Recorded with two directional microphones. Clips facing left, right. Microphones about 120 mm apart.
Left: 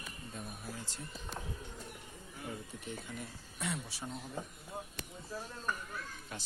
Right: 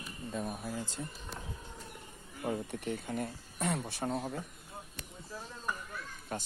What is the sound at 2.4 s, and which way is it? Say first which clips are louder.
Speech: right 9 dB; 65° right (ahead or behind).